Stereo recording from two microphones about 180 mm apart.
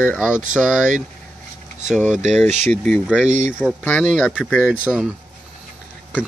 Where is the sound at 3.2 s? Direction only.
45° right (ahead or behind).